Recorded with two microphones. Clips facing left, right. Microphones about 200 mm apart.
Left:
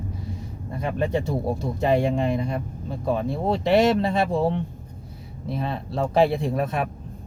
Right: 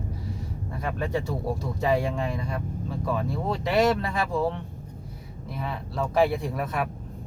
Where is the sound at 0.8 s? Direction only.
25° left (ahead or behind).